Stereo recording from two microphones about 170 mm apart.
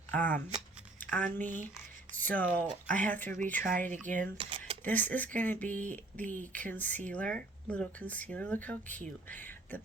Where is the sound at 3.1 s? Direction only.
10° left (ahead or behind).